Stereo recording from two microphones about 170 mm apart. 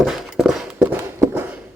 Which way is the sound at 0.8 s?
15° right (ahead or behind).